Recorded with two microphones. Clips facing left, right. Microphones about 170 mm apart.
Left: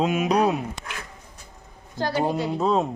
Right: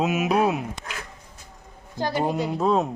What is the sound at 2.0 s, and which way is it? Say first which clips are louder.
Speech: left 1 dB; 15° right (ahead or behind).